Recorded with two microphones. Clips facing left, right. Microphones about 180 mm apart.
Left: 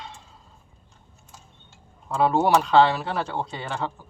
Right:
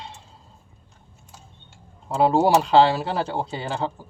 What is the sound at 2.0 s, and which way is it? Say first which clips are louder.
Speech: right 2 dB; 30° right (ahead or behind).